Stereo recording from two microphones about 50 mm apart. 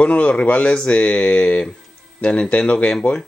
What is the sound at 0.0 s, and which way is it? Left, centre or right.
Speech, left.